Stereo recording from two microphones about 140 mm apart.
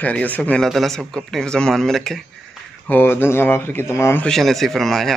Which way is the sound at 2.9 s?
15° left (ahead or behind).